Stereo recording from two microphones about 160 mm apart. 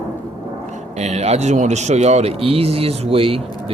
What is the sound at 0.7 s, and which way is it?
Speech, 45° right (ahead or behind).